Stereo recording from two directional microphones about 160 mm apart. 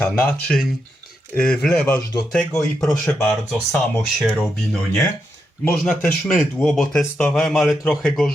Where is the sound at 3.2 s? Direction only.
15° left (ahead or behind).